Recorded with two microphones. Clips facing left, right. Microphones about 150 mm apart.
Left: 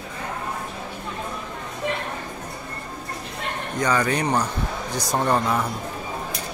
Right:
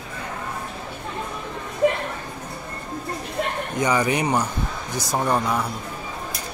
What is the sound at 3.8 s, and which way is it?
Speech, 15° right (ahead or behind).